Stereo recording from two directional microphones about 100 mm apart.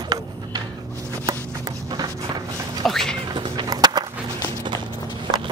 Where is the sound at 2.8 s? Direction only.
5° left (ahead or behind).